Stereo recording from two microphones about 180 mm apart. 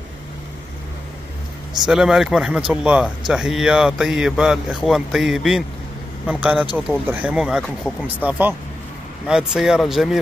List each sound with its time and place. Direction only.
1.9 s speech: 5° right (ahead or behind)